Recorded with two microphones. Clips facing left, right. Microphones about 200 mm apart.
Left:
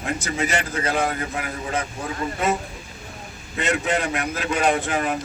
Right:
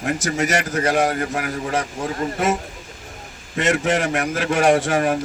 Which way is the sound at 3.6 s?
80° right.